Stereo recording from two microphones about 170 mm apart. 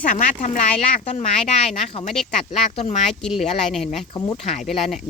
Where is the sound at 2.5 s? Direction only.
40° left (ahead or behind).